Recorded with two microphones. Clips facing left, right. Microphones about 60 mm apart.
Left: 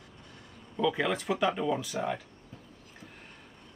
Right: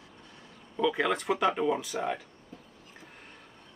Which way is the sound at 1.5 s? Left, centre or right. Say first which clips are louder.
Right 2 dB; right.